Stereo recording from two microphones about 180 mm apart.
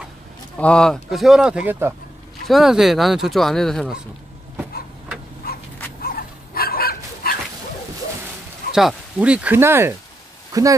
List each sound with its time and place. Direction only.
0.6 s speech: 5° left (ahead or behind)
4.6 s a sound: 10° right (ahead or behind)
5.4 s insect: 55° left (ahead or behind)
6.0 s dog: 55° left (ahead or behind)
8.7 s speech: 5° right (ahead or behind)